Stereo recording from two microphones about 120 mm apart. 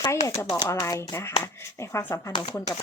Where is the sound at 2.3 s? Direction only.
35° left (ahead or behind).